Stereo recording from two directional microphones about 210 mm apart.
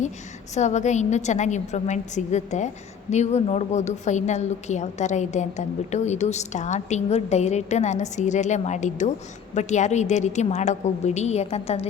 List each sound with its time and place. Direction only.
0.5 s a woman's voice: 35° left (ahead or behind)